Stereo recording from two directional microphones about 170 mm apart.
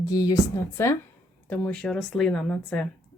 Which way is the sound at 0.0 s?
20° left (ahead or behind).